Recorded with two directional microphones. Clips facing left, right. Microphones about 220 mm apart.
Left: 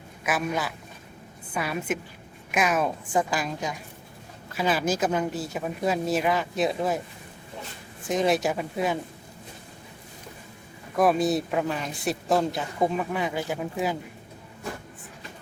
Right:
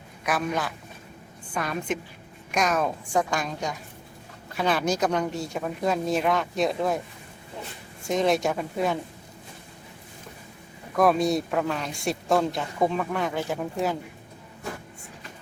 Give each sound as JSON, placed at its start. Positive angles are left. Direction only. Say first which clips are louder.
{"t": 0.3, "sound": "a woman's voice", "louder": "even", "side_deg": 5}
{"t": 8.0, "sound": "a woman's voice", "louder": "even", "side_deg": 5}
{"t": 10.9, "sound": "a woman's voice", "louder": "right 1 dB", "side_deg": 0}